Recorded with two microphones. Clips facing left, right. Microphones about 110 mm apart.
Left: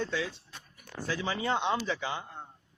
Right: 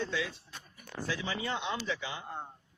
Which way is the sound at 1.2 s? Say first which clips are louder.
Left 9 dB; 40° left (ahead or behind).